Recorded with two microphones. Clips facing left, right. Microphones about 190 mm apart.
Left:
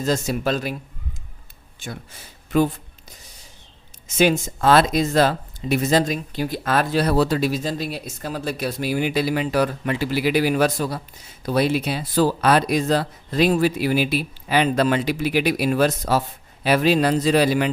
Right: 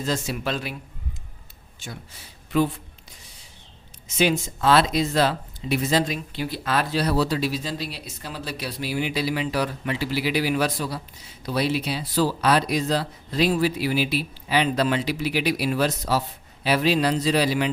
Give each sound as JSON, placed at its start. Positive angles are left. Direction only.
{"t": 0.0, "sound": "speech", "side_deg": 40}
{"t": 4.2, "sound": "speech", "side_deg": 45}